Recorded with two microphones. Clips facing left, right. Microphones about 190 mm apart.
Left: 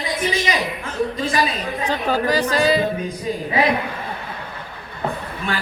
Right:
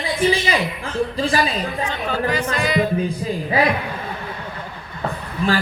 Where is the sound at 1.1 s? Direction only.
35° right (ahead or behind).